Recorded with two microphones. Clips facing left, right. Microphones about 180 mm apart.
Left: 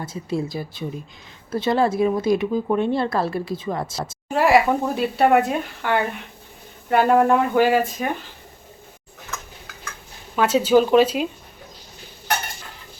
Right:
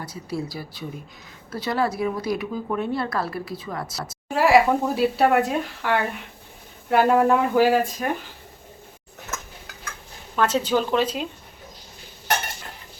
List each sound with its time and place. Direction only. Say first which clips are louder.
0.0 s speech: left 4 dB; 25° left (ahead or behind)
4.3 s speech: even; centre (ahead or behind)
10.3 s a woman's voice: left 5 dB; 5° left (ahead or behind)